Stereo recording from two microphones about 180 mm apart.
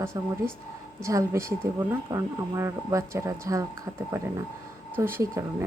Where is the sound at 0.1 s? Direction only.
20° right (ahead or behind).